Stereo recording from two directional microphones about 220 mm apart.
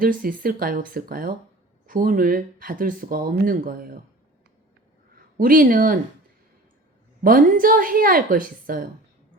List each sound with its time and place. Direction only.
0.0 s speech: 40° right (ahead or behind)
5.1 s speech: 40° right (ahead or behind)
7.2 s speech: 40° right (ahead or behind)